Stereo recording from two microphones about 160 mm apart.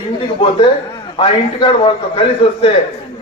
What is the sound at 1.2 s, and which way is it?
A man's voice, 35° left (ahead or behind).